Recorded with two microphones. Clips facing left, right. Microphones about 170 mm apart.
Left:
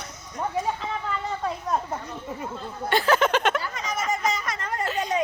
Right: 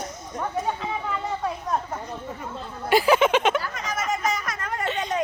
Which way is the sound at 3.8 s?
Centre (ahead or behind).